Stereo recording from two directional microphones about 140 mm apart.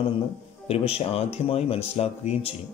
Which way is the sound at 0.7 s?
45° left (ahead or behind).